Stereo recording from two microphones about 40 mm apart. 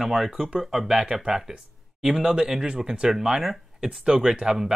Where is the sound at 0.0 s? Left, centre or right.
Centre.